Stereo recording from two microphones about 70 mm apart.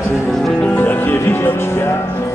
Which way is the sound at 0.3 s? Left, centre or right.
Centre.